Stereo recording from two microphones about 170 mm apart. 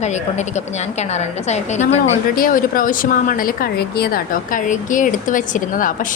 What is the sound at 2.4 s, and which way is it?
Speech, 55° left (ahead or behind).